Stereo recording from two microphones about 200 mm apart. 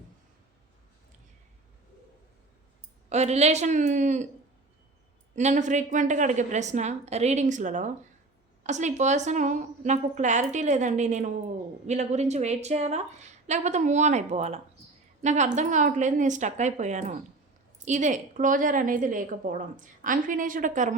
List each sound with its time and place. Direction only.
3.1 s a woman's voice: 35° right (ahead or behind)
5.3 s a woman's voice: 35° right (ahead or behind)